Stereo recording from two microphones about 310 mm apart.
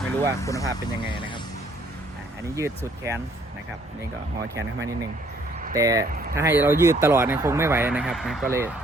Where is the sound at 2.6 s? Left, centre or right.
Centre.